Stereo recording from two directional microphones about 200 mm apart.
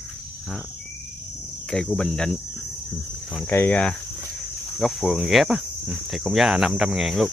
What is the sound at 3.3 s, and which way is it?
Speech, 10° left (ahead or behind).